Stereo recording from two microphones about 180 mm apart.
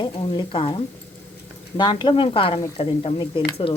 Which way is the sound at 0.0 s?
25° left (ahead or behind).